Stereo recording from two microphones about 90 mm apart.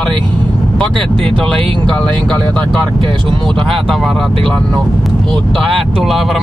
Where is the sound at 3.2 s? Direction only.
65° right (ahead or behind).